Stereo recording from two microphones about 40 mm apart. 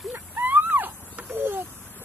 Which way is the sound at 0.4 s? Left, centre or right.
Right.